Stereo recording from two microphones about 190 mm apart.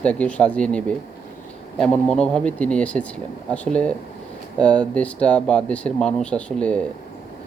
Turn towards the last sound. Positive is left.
turn(degrees=5)  # may be behind; listen again after turning